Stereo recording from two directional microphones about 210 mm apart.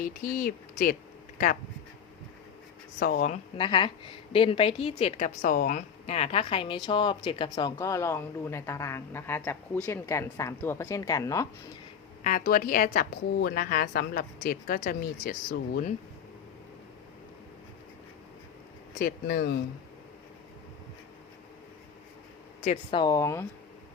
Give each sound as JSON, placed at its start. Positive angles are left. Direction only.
{"t": 0.0, "sound": "speech", "side_deg": 40}
{"t": 3.0, "sound": "speech", "side_deg": 40}
{"t": 3.6, "sound": "a woman's voice", "side_deg": 25}
{"t": 5.4, "sound": "a woman's voice", "side_deg": 40}
{"t": 12.2, "sound": "a woman's voice", "side_deg": 40}
{"t": 18.9, "sound": "a woman's voice", "side_deg": 45}
{"t": 22.6, "sound": "a woman's voice", "side_deg": 30}